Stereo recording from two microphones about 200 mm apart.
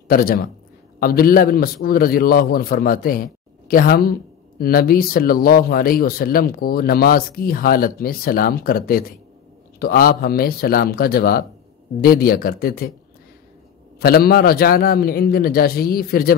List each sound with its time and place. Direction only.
0.1 s a man's voice: 50° left (ahead or behind)
13.9 s a man's voice: 50° left (ahead or behind)